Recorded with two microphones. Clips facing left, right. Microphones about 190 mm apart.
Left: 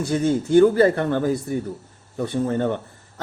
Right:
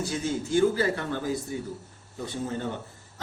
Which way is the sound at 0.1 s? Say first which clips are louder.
Left 12 dB; 60° left (ahead or behind).